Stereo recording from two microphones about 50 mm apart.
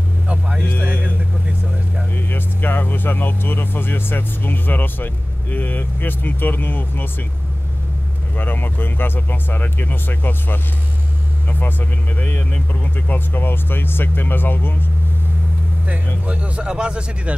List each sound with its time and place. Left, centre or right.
2.1 s speech: left
8.4 s speech: left
11.6 s speech: left
16.3 s speech: right